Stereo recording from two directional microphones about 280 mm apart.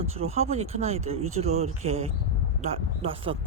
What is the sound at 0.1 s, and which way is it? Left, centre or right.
Speech, right.